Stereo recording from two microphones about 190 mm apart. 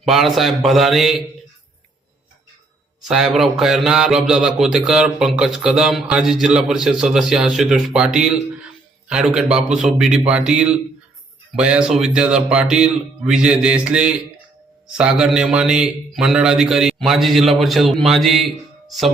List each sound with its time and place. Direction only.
0.0 s speech: centre (ahead or behind)
3.0 s speech: 5° right (ahead or behind)